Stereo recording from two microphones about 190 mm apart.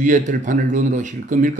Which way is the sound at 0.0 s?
40° right (ahead or behind).